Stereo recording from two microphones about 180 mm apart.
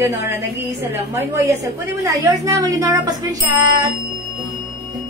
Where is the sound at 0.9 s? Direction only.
15° right (ahead or behind).